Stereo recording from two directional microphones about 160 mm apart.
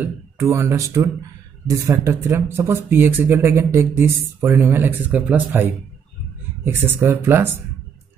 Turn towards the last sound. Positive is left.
turn(degrees=-15)  # may be behind; listen again after turning